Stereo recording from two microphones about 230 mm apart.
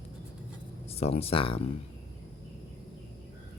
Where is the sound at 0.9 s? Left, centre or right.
Left.